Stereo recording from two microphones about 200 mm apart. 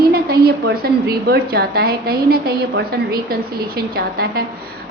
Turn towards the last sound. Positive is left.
turn(degrees=-50)  # may be behind; listen again after turning